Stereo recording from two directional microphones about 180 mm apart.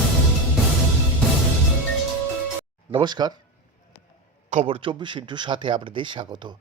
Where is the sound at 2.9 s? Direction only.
25° right (ahead or behind).